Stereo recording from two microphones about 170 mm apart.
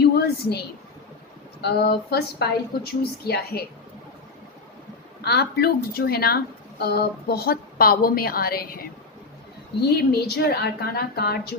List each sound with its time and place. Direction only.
0.0 s a sound: 70° left (ahead or behind)
1.6 s speech: 70° left (ahead or behind)
5.2 s a woman's voice: 70° left (ahead or behind)
10.0 s speech: 70° left (ahead or behind)